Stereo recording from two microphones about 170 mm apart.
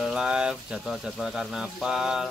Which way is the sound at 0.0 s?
Centre (ahead or behind).